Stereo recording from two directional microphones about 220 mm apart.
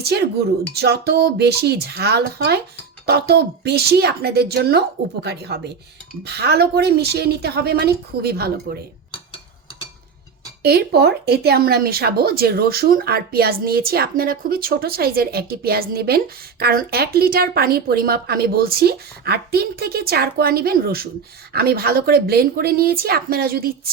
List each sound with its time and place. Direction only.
0.7 s speech: 45° right (ahead or behind)
10.6 s speech: 45° right (ahead or behind)